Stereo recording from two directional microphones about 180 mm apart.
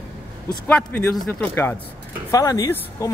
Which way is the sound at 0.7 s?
10° left (ahead or behind).